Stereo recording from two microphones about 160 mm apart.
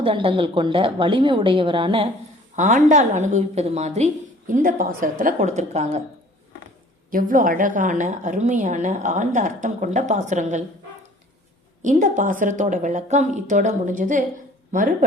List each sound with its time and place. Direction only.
0.0 s a woman's voice: 35° right (ahead or behind)
2.6 s a woman's voice: 50° right (ahead or behind)
4.5 s a woman's voice: 60° right (ahead or behind)
7.1 s a woman's voice: 60° right (ahead or behind)
11.8 s a woman's voice: 50° right (ahead or behind)